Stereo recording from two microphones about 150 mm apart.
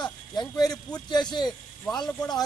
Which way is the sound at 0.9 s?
30° left (ahead or behind).